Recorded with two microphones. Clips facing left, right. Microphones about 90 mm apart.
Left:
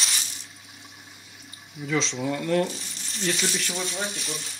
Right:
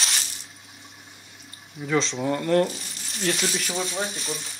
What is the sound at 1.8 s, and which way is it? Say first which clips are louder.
Speech: right 3 dB; 45° right (ahead or behind).